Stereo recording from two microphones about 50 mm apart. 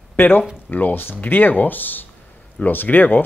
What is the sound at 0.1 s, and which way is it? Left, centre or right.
Speech, left.